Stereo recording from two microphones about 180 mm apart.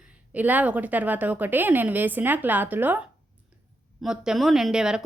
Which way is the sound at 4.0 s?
Centre (ahead or behind).